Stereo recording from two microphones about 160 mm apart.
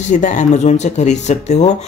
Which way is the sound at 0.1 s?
50° left (ahead or behind).